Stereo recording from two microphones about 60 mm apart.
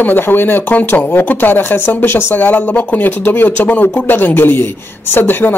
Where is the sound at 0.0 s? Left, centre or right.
Left.